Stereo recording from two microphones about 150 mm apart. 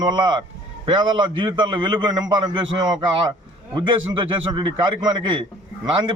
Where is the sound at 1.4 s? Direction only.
30° right (ahead or behind).